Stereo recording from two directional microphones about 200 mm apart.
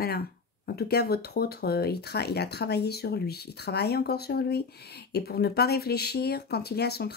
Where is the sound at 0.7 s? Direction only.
55° left (ahead or behind).